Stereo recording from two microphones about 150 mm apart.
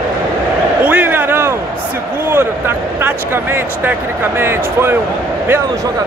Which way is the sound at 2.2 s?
15° right (ahead or behind).